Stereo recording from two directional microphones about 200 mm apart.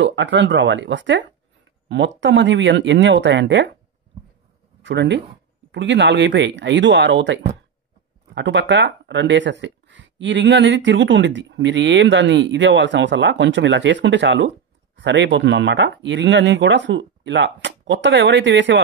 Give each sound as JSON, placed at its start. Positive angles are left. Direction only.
{"t": 0.0, "sound": "speech", "side_deg": -65}
{"t": 4.8, "sound": "speech", "side_deg": -65}
{"t": 8.4, "sound": "speech", "side_deg": -60}